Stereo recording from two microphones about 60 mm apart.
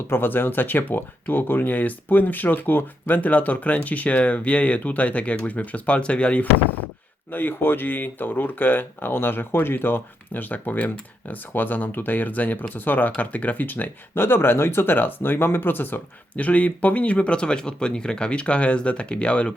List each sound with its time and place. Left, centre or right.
0.1 s speech: left
7.3 s speech: left